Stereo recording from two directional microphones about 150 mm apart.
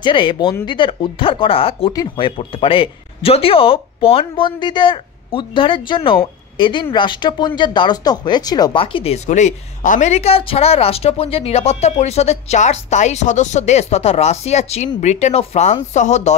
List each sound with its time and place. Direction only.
0.0 s speech: 35° left (ahead or behind); by 16.3 s 50° left (ahead or behind)